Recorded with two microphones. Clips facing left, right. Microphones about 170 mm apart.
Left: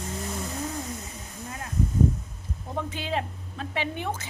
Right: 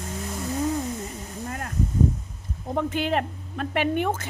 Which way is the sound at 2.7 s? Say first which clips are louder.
Right 6 dB; 55° right (ahead or behind).